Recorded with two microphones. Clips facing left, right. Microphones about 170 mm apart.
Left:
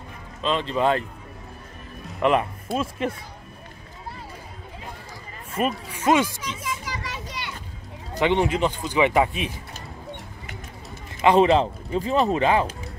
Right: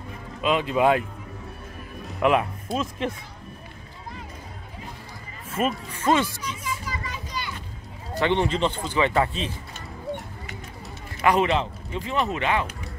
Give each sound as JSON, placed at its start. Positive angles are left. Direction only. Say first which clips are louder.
{"t": 0.4, "sound": "speech", "louder": "right 2 dB", "side_deg": -10}
{"t": 2.1, "sound": "speech", "louder": "even", "side_deg": 0}
{"t": 5.5, "sound": "speech", "louder": "even", "side_deg": 0}
{"t": 5.9, "sound": "speech", "louder": "left 4 dB", "side_deg": 15}
{"t": 7.2, "sound": "children playing", "louder": "right 2 dB", "side_deg": 70}
{"t": 8.2, "sound": "speech", "louder": "left 2 dB", "side_deg": 15}
{"t": 11.1, "sound": "speech", "louder": "left 4 dB", "side_deg": 25}